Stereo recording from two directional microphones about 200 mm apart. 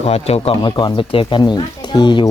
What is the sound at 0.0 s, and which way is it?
Speech, 30° left (ahead or behind).